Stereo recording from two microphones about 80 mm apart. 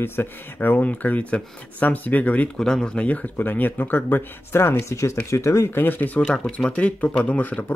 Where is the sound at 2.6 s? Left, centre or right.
Centre; by 4.7 s left.